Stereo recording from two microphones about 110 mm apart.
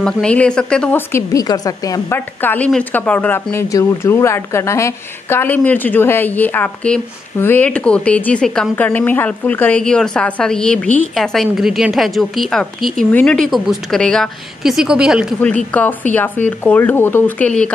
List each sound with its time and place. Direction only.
0.0 s a woman's voice: 10° left (ahead or behind)
0.9 s a woman's voice: 25° left (ahead or behind)
1.4 s a woman's voice: 35° left (ahead or behind)
2.1 s a woman's voice: 15° left (ahead or behind)
3.5 s a woman's voice: 25° left (ahead or behind); by 11.1 s 10° left (ahead or behind)
11.1 s a woman's voice: centre (ahead or behind)
13.5 s a woman's voice: centre (ahead or behind)
15.4 s a woman's voice: 15° left (ahead or behind)